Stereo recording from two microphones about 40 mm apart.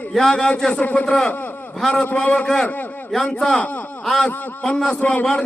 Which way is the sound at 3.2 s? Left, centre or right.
Left.